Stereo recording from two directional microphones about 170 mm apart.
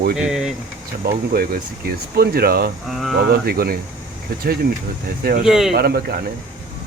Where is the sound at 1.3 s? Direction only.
65° right (ahead or behind).